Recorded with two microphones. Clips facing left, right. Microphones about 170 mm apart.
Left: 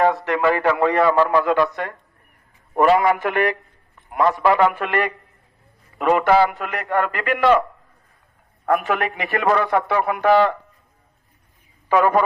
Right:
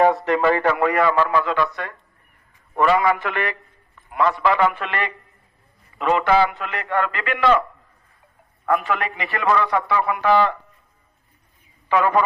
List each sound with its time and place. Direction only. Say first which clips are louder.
0.0 s a man's voice: right 1 dB; centre (ahead or behind)
0.8 s a man's voice: left 1 dB; 20° left (ahead or behind)
1.0 s a man's voice: left 3 dB; 40° left (ahead or behind)
8.6 s a man's voice: left 2 dB; 50° left (ahead or behind)
11.9 s a man's voice: left 2 dB; 45° left (ahead or behind)